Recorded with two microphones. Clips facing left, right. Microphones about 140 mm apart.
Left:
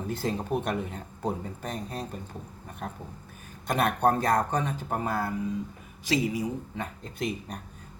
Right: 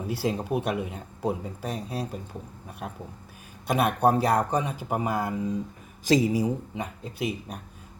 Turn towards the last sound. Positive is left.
turn(degrees=-5)  # may be behind; listen again after turning